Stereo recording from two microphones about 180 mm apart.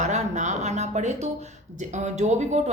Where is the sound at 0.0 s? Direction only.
40° right (ahead or behind).